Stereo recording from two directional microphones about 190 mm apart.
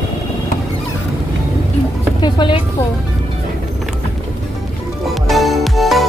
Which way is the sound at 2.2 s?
25° left (ahead or behind).